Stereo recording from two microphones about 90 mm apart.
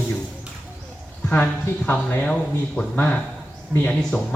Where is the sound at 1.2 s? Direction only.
15° left (ahead or behind).